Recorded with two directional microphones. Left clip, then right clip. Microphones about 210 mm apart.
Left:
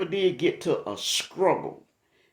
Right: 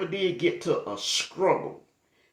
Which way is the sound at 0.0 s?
50° left (ahead or behind).